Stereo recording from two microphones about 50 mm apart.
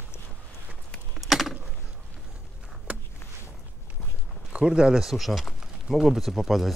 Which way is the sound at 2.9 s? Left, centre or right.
Right.